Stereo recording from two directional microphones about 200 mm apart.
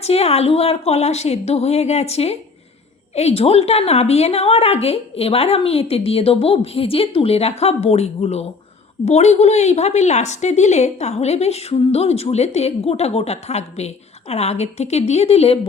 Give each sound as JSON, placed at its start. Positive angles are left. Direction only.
{"t": 0.0, "sound": "a woman's voice", "side_deg": 30}